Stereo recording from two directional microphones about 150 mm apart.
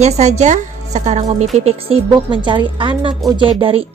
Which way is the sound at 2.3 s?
30° right (ahead or behind).